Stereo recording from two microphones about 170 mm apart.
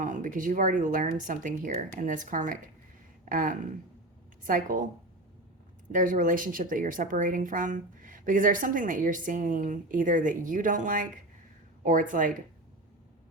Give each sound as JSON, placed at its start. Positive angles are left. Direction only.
{"t": 0.0, "sound": "speech", "side_deg": -50}
{"t": 5.9, "sound": "speech", "side_deg": -50}